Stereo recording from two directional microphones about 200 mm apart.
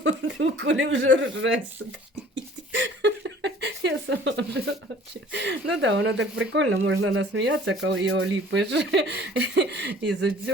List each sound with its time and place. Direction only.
0.0 s speech: 70° right (ahead or behind)
2.3 s a sound: 65° right (ahead or behind)
5.3 s speech: 60° right (ahead or behind)